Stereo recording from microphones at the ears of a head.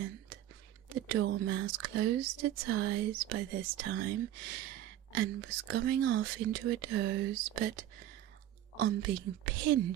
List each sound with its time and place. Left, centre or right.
0.9 s speech: right